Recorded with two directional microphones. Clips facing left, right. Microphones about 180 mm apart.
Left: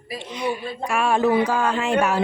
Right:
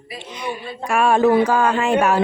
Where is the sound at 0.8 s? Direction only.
50° right (ahead or behind).